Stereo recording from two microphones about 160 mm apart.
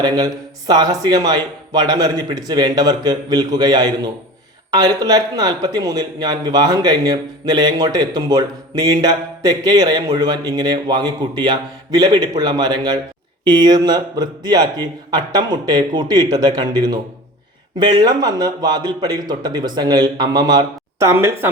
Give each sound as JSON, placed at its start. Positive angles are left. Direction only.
{"t": 0.0, "sound": "speech", "side_deg": -25}